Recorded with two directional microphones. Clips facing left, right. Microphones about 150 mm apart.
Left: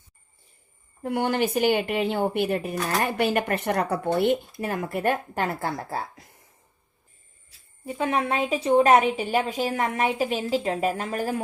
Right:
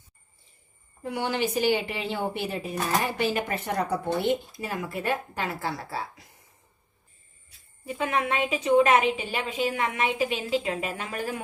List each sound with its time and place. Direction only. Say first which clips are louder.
1.0 s speech: left 4 dB; 50° left (ahead or behind)
7.9 s a woman's voice: left 2 dB; 30° left (ahead or behind)